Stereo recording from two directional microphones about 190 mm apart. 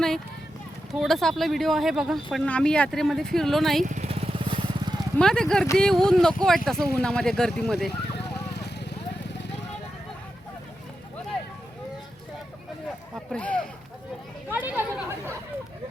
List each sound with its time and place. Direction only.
0.9 s speech: centre (ahead or behind)
3.8 s vehicle: 35° right (ahead or behind)
5.1 s speech: 5° left (ahead or behind)
8.1 s vehicle: 60° left (ahead or behind)
13.1 s a sound: 5° left (ahead or behind)
14.5 s chatter: 10° right (ahead or behind)